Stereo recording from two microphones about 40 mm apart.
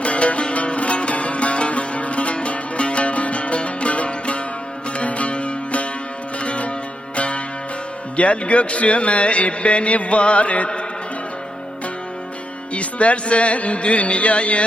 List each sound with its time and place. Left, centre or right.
0.0 s music: left
6.4 s sitar: left
7.2 s music: left
8.1 s speech: left
12.7 s speech: left